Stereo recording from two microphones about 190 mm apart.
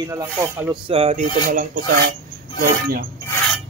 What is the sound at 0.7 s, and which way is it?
Speech, 30° right (ahead or behind).